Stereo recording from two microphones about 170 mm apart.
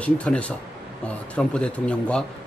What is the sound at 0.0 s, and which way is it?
Speech, 5° left (ahead or behind).